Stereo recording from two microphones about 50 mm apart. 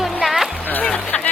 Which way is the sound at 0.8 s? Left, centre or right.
Centre.